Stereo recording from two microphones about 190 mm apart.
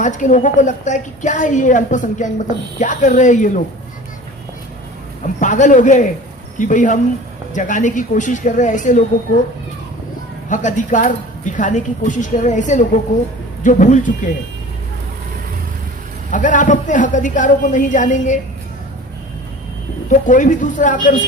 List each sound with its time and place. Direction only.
0.0 s a woman's voice: 40° left (ahead or behind)
5.4 s a woman's voice: 40° left (ahead or behind)
10.5 s a woman's voice: 40° left (ahead or behind)
16.3 s a woman's voice: 40° left (ahead or behind)
20.1 s speech: 40° left (ahead or behind)